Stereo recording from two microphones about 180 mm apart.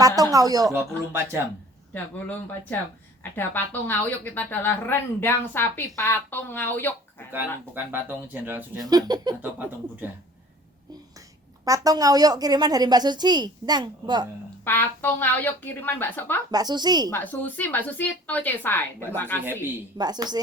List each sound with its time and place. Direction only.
0.0 s a woman's voice: 20° right (ahead or behind)
1.9 s speech: 10° left (ahead or behind)
7.8 s speech: 10° right (ahead or behind)
8.8 s a woman's voice: 20° right (ahead or behind)
9.4 s speech: 10° right (ahead or behind)
11.6 s a woman's voice: 20° right (ahead or behind)
14.6 s speech: 10° left (ahead or behind)
16.5 s a woman's voice: 20° right (ahead or behind)
17.1 s speech: 10° left (ahead or behind)
20.0 s a woman's voice: 20° right (ahead or behind)